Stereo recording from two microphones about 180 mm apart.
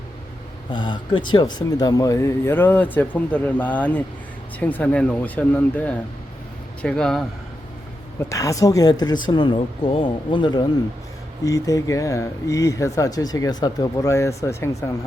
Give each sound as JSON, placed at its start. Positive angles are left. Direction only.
{"t": 0.7, "sound": "speech", "side_deg": 25}
{"t": 8.3, "sound": "speech", "side_deg": 20}